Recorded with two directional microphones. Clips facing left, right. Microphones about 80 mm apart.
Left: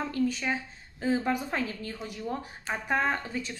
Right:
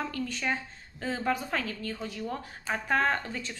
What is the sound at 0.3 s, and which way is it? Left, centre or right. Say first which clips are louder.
A woman's voice: left 1 dB; centre.